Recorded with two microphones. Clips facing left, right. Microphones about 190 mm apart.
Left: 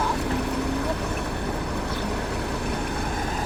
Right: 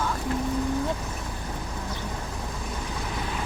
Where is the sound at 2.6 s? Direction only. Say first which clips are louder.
Left 6 dB; 65° left (ahead or behind).